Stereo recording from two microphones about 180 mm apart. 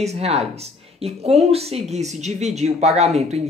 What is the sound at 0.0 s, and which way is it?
Speech, 35° right (ahead or behind).